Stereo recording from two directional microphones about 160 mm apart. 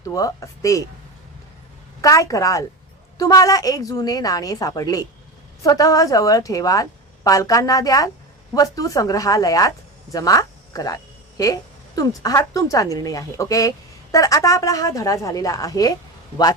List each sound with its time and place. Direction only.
0.0 s speech: 20° left (ahead or behind)
2.0 s speech: 20° left (ahead or behind)